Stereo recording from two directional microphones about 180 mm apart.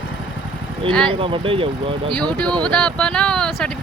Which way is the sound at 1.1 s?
30° right (ahead or behind).